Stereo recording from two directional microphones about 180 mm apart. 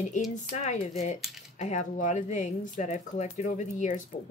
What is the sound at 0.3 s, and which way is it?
Speech, 40° left (ahead or behind).